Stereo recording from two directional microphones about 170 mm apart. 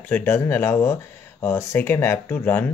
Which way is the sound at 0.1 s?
10° left (ahead or behind).